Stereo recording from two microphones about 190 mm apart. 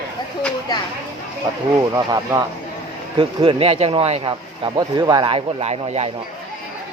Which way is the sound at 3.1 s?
25° right (ahead or behind).